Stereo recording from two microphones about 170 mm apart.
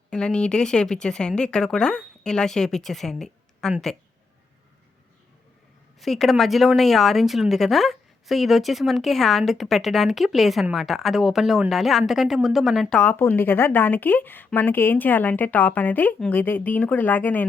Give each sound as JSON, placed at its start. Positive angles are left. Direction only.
{"t": 0.1, "sound": "speech", "side_deg": 5}
{"t": 6.0, "sound": "speech", "side_deg": 0}